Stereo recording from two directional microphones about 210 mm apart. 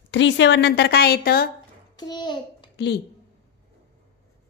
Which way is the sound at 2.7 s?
55° left (ahead or behind).